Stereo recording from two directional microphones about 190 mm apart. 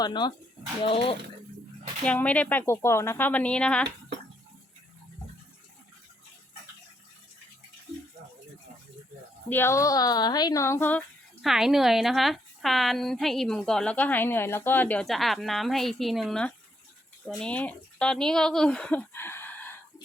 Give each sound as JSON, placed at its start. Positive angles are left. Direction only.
{"t": 0.0, "sound": "speech", "side_deg": 25}
{"t": 2.0, "sound": "speech", "side_deg": 5}
{"t": 9.5, "sound": "speech", "side_deg": 10}
{"t": 11.4, "sound": "a woman's voice", "side_deg": 0}